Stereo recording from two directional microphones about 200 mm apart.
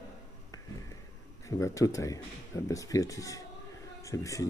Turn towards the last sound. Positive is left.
turn(degrees=15)  # may be behind; listen again after turning